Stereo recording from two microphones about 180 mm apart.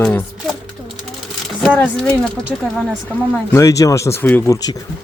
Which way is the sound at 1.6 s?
5° left (ahead or behind).